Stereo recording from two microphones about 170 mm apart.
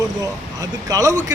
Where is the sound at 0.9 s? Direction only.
20° right (ahead or behind).